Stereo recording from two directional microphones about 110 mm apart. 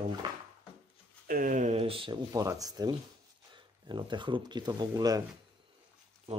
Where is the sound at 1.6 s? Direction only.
75° right (ahead or behind); by 2.1 s 55° right (ahead or behind).